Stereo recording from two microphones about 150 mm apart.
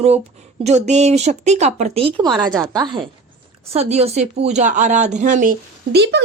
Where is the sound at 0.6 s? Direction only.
50° right (ahead or behind); by 3.0 s 30° right (ahead or behind).